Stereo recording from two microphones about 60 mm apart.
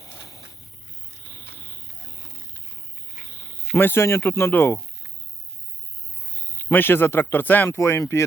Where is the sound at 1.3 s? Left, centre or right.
Left.